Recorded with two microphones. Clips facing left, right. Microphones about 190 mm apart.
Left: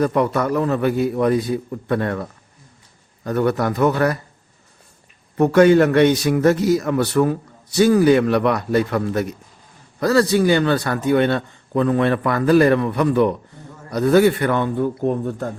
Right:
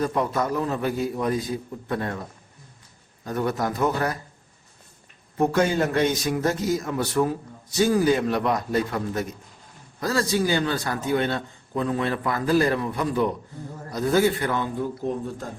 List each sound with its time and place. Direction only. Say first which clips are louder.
0.0 s a man's voice: left 6 dB; 70° left (ahead or behind)
3.2 s a man's voice: left 6 dB; 70° left (ahead or behind)
5.4 s a man's voice: left 9 dB; 70° left (ahead or behind)